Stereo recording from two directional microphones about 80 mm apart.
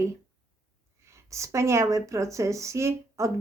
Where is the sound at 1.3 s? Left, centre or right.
Right.